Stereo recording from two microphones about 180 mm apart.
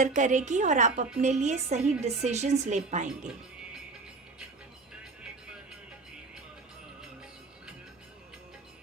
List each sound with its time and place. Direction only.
0.0 s a woman's voice: 45° right (ahead or behind)